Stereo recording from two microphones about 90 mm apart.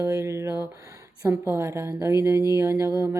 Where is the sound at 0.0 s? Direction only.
30° right (ahead or behind).